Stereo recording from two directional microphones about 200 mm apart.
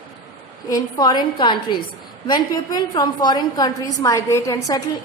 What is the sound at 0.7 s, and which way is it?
A woman's voice, 20° left (ahead or behind).